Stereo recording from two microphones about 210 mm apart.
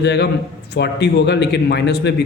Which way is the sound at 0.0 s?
55° left (ahead or behind).